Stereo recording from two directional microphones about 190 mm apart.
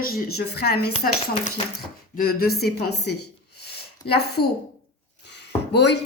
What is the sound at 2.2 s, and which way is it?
A woman's voice, 50° left (ahead or behind).